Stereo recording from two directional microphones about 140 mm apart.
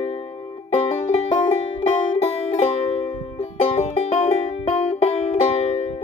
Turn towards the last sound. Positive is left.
turn(degrees=45)  # may be behind; listen again after turning